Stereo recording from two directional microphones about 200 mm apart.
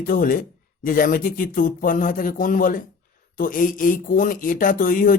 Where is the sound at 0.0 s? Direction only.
45° left (ahead or behind).